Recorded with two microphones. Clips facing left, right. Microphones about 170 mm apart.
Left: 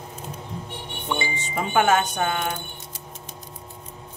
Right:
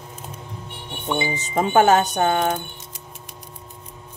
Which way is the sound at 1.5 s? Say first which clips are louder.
Right 4 dB; 40° right (ahead or behind).